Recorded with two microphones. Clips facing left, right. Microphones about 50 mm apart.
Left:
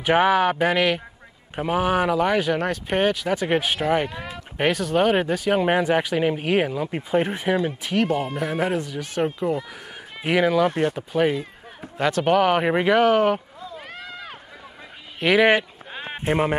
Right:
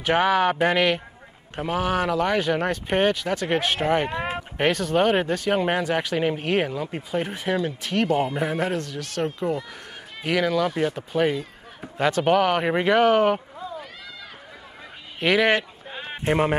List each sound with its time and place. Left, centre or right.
0.0 s speech: centre
1.5 s speech: centre
7.0 s speech: left; by 8.1 s centre
8.1 s speech: right
8.5 s speech: centre
13.7 s run: left
15.1 s a sound: centre